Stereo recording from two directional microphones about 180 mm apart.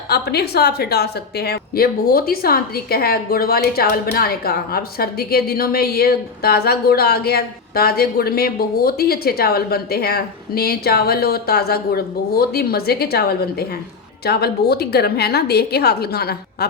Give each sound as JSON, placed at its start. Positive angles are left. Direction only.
{"t": 0.1, "sound": "a woman's voice", "side_deg": 60}